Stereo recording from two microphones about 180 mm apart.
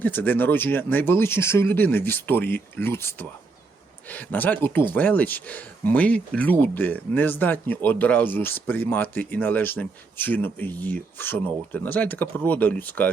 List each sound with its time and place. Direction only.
0.0 s speech: 10° left (ahead or behind)